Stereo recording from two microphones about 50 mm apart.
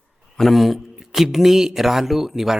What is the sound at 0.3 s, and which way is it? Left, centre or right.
A man's voice, centre.